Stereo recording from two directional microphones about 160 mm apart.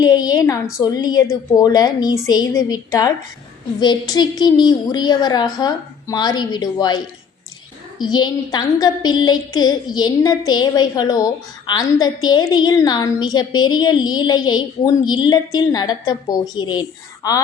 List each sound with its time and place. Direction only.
0.0 s a woman's voice: 25° left (ahead or behind)